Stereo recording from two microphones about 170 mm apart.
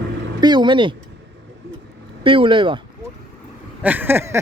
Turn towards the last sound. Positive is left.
turn(degrees=-15)  # may be behind; listen again after turning